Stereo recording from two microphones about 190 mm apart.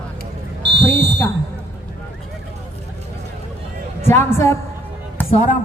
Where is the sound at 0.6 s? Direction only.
65° right (ahead or behind).